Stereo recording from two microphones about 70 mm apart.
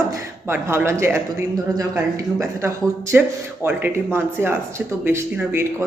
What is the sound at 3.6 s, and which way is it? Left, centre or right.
Speech, right.